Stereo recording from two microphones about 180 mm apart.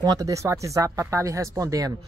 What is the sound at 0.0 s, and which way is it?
Speech, 20° right (ahead or behind).